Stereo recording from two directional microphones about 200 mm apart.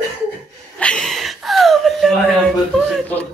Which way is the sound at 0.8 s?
5° left (ahead or behind).